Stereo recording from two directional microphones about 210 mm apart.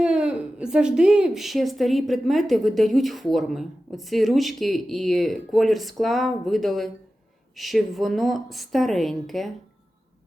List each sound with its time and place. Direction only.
0.0 s speech: 5° right (ahead or behind)